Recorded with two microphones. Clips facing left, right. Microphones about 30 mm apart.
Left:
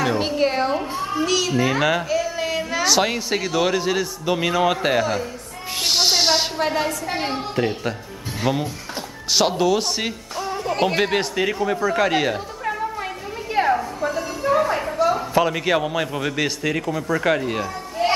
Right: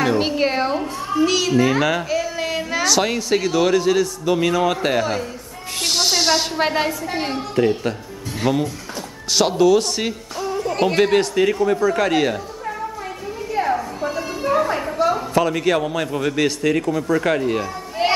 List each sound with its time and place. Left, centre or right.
0.2 s a woman's voice: centre
2.8 s a man's voice: centre
5.9 s music: centre
6.7 s a woman's voice: centre
7.2 s a woman's voice: centre
13.6 s a sound: left
14.0 s a sound: centre
15.4 s a man's voice: centre
18.0 s a sound: right